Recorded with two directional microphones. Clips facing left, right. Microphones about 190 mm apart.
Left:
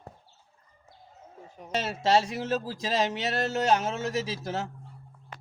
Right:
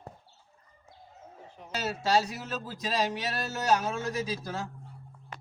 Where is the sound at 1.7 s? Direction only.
25° left (ahead or behind).